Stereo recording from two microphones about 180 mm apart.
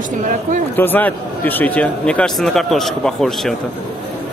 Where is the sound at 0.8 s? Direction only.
10° left (ahead or behind).